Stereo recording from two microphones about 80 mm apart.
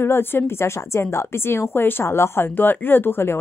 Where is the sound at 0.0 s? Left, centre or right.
Left.